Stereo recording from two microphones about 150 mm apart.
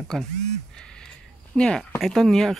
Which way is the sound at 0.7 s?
5° left (ahead or behind).